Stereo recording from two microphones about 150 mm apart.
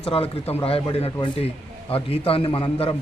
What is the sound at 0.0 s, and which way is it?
A man's voice, 40° left (ahead or behind).